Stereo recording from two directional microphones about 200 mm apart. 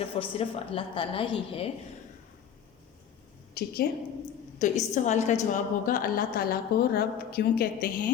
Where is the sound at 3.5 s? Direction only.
50° left (ahead or behind).